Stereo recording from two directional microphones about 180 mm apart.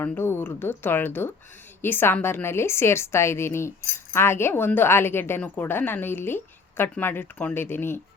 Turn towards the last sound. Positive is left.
turn(degrees=10)  # may be behind; listen again after turning